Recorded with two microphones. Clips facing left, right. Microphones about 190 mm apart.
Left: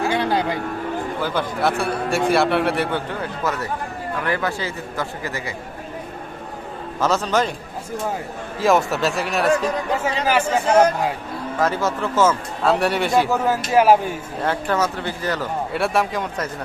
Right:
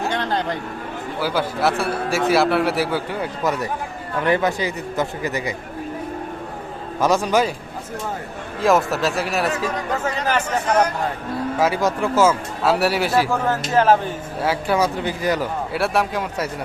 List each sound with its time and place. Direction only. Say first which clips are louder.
0.1 s a sound: left 2 dB; 10° left (ahead or behind)
1.2 s a man's voice: right 3 dB; 5° right (ahead or behind)
4.2 s a man's voice: right 5 dB; 20° right (ahead or behind)
7.0 s speech: right 2 dB; 10° right (ahead or behind)
8.6 s a man's voice: even; centre (ahead or behind)
11.6 s speech: right 1 dB; 10° right (ahead or behind)
13.3 s speech: left 1 dB; 10° left (ahead or behind)
14.4 s speech: right 2 dB; 10° right (ahead or behind)
15.7 s a man's voice: even; centre (ahead or behind)